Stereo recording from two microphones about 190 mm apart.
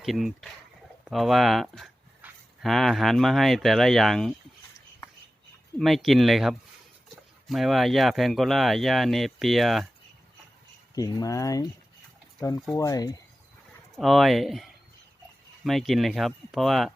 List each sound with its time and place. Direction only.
0.0 s speech: centre (ahead or behind)
5.8 s speech: centre (ahead or behind)
10.9 s speech: 20° left (ahead or behind)
12.7 s speech: 20° left (ahead or behind)
13.9 s speech: centre (ahead or behind)